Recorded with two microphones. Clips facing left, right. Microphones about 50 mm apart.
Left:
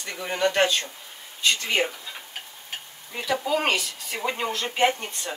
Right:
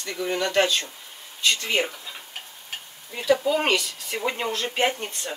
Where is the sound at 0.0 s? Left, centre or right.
Centre.